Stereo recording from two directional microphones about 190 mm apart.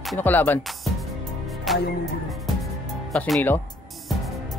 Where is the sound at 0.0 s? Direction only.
5° left (ahead or behind).